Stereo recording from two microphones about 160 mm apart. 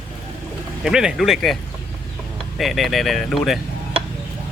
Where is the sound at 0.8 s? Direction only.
5° right (ahead or behind).